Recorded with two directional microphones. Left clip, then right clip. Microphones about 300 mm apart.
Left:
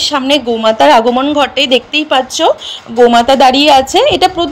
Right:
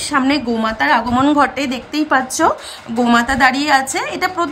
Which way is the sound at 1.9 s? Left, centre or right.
Centre.